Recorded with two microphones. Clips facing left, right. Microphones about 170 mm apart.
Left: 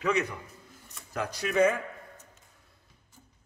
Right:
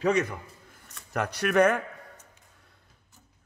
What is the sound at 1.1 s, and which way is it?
Speech, 65° right (ahead or behind).